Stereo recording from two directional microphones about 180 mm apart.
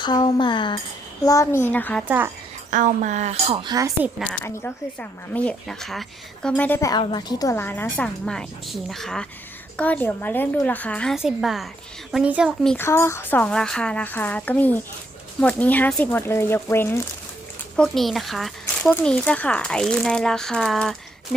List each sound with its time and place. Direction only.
0.0 s cutlery: 25° left (ahead or behind)
1.2 s speech: 20° left (ahead or behind)
2.0 s speech: 10° right (ahead or behind)
2.6 s speech: 45° right (ahead or behind)
3.6 s speech: 20° right (ahead or behind)
4.2 s speech: 5° left (ahead or behind)
12.6 s speech: 10° left (ahead or behind)
17.7 s speech: 5° left (ahead or behind)